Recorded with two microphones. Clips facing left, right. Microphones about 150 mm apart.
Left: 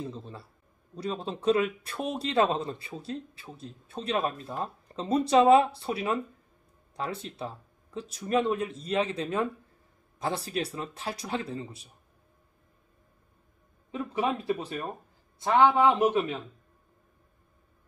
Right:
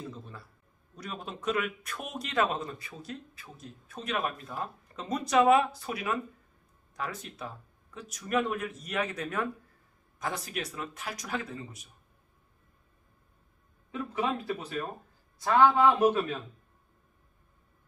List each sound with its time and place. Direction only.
0.0 s a sound: 30° left (ahead or behind)
0.9 s speech: 30° left (ahead or behind)
13.9 s speech: 25° left (ahead or behind)